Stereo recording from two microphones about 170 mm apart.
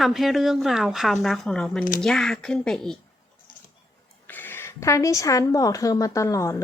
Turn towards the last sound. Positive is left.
turn(degrees=20)  # may be behind; listen again after turning